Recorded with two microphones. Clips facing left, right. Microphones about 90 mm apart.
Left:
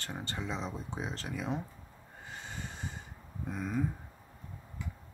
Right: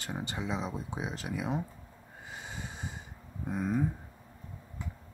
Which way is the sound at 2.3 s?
15° right (ahead or behind).